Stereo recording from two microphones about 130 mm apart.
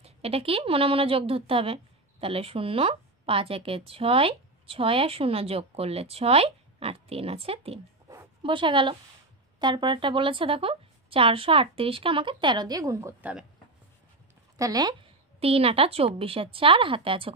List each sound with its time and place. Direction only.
0.0 s a woman's voice: 50° right (ahead or behind); by 13.3 s 20° right (ahead or behind)
14.6 s speech: 30° right (ahead or behind)
15.4 s a woman's voice: 45° right (ahead or behind)